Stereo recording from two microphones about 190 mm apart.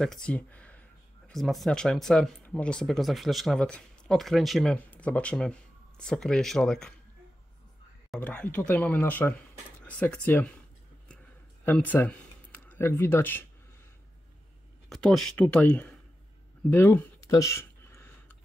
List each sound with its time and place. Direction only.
0.0 s speech: 5° left (ahead or behind)
8.1 s speech: 5° left (ahead or behind)
11.6 s speech: 10° left (ahead or behind)
14.9 s speech: centre (ahead or behind)
16.7 s a sound: 10° left (ahead or behind)